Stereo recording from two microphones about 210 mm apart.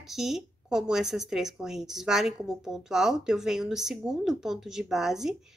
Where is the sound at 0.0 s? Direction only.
Centre (ahead or behind).